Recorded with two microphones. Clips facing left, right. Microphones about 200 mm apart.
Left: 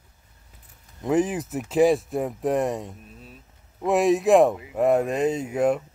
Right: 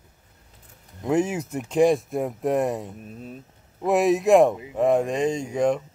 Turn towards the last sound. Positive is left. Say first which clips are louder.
# even
turn(degrees=5)  # may be behind; listen again after turning